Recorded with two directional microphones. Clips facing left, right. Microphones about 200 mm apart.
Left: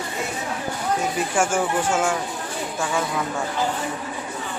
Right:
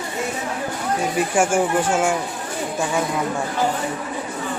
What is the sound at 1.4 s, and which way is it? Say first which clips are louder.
Speech: right 3 dB; 15° right (ahead or behind).